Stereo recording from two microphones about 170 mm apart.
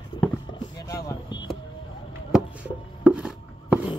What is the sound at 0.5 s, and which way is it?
Vehicle, 25° left (ahead or behind).